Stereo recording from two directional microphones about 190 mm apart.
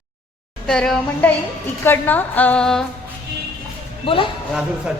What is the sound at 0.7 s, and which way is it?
A woman's voice, 5° left (ahead or behind).